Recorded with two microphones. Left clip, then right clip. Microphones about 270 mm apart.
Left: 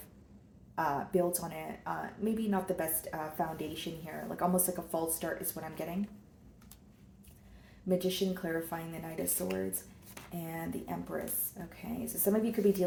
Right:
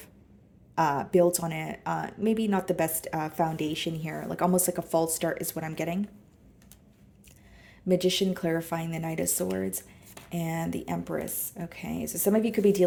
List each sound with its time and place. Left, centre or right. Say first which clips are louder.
0.8 s speech: right 8 dB; right
7.9 s speech: right 7 dB; right